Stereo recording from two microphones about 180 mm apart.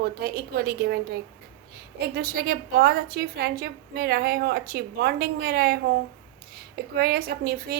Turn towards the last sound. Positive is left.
turn(degrees=-55)  # may be behind; listen again after turning